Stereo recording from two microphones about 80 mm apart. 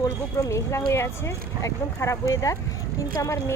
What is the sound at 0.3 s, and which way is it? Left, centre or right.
Speech, left.